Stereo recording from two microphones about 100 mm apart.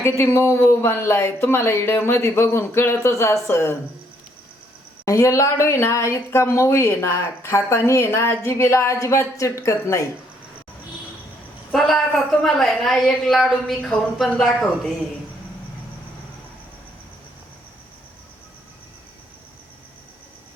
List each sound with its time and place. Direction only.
0.0 s speech: 25° left (ahead or behind)
5.0 s speech: 30° left (ahead or behind)
11.7 s a woman's voice: centre (ahead or behind)